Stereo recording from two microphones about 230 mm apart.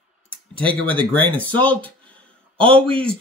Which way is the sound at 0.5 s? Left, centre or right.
Right.